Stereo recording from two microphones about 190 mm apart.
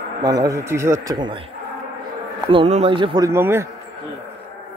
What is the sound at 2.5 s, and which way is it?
Speech, 30° right (ahead or behind).